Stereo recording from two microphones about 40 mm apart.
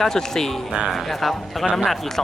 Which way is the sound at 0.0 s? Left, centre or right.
Centre.